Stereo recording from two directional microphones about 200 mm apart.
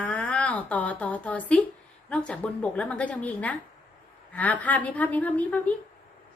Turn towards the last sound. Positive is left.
turn(degrees=5)  # may be behind; listen again after turning